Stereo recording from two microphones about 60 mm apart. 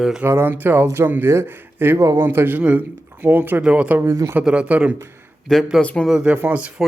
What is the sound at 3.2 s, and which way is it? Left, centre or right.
Speech, right.